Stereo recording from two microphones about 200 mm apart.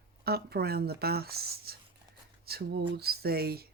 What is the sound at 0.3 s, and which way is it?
Speech, 50° right (ahead or behind).